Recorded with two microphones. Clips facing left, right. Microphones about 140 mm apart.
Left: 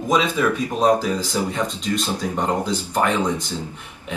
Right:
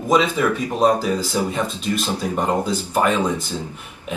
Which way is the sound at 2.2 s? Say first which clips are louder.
Right 2 dB; 10° right (ahead or behind).